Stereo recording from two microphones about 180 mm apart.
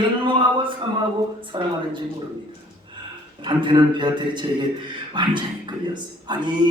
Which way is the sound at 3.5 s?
25° right (ahead or behind).